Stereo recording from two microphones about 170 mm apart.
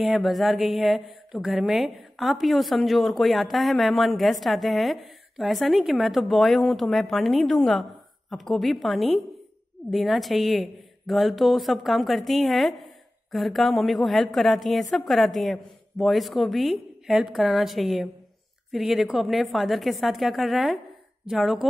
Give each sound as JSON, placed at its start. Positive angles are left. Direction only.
{"t": 0.0, "sound": "a woman's voice", "side_deg": 0}